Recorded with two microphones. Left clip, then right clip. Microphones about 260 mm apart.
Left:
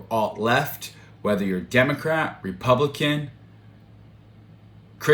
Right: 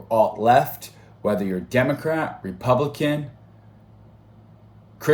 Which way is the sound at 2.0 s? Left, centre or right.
Right.